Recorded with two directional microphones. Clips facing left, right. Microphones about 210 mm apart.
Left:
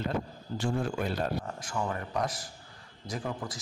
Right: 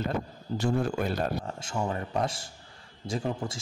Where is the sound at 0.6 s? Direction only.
40° right (ahead or behind).